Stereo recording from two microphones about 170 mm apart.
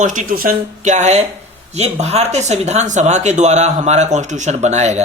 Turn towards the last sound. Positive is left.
turn(degrees=-40)  # may be behind; listen again after turning